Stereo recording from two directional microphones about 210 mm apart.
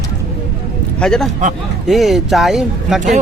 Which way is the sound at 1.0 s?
Centre (ahead or behind).